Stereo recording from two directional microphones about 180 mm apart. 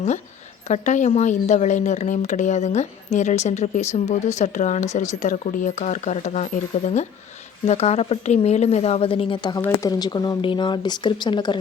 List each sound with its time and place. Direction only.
0.7 s a woman's voice: 40° left (ahead or behind); by 11.6 s 25° left (ahead or behind)